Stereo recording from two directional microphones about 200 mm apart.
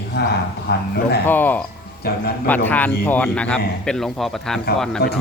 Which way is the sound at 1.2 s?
10° left (ahead or behind).